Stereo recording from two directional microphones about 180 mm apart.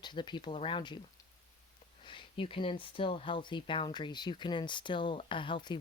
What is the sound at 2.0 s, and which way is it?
Speech, 25° left (ahead or behind).